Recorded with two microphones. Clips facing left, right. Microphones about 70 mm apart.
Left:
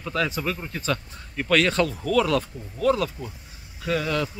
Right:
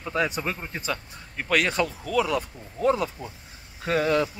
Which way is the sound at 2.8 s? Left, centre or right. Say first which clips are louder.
Left 1 dB; right.